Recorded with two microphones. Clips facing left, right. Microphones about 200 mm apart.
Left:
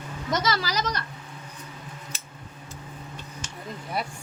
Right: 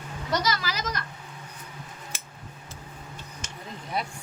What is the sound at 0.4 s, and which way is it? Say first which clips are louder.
Speech: left 3 dB; 35° left (ahead or behind).